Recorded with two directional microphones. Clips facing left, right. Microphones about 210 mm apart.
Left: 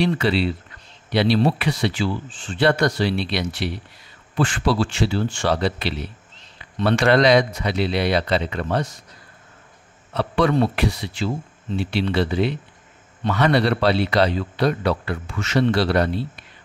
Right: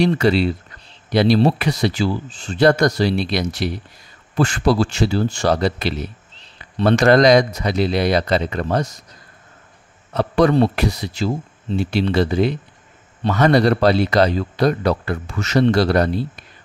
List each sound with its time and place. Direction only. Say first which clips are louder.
0.0 s speech: right 4 dB; 45° right (ahead or behind)
10.1 s speech: right 4 dB; 40° right (ahead or behind)